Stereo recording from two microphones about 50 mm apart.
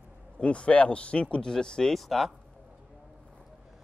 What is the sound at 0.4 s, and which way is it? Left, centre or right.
Speech, left.